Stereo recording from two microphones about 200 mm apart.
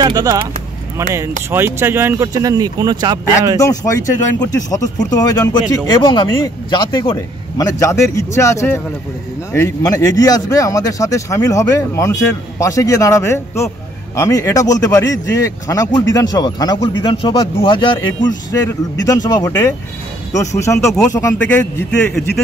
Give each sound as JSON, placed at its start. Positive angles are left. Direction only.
{"t": 0.0, "sound": "speech", "side_deg": -20}
{"t": 3.5, "sound": "a man's voice", "side_deg": 15}
{"t": 20.8, "sound": "speech", "side_deg": 0}
{"t": 21.1, "sound": "a man's voice", "side_deg": 15}